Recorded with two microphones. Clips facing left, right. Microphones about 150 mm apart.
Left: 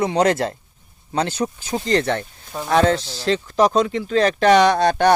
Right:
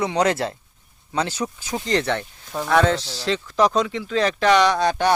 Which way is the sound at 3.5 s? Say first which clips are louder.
Left 2 dB; 25° left (ahead or behind).